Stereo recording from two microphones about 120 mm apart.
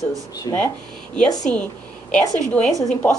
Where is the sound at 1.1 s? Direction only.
5° left (ahead or behind).